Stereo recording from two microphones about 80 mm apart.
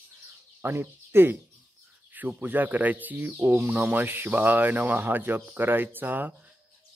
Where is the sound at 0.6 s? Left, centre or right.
Right.